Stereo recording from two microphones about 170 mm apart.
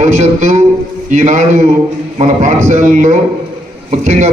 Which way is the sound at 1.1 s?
45° right (ahead or behind).